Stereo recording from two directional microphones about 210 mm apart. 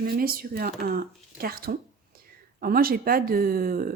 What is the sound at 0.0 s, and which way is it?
Speech, 45° right (ahead or behind).